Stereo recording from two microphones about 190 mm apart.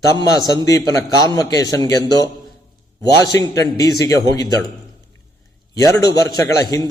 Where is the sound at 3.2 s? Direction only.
20° left (ahead or behind).